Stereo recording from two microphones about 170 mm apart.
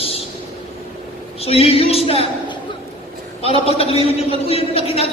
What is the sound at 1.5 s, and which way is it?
Speech, 35° left (ahead or behind).